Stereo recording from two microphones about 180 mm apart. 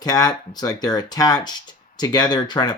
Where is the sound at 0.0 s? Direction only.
20° left (ahead or behind).